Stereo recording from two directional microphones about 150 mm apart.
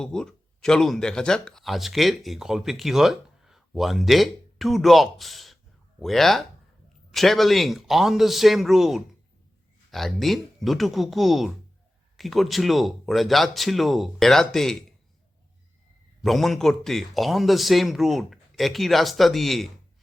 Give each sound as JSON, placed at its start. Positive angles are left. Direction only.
{"t": 0.0, "sound": "speech", "side_deg": 5}
{"t": 16.2, "sound": "speech", "side_deg": 0}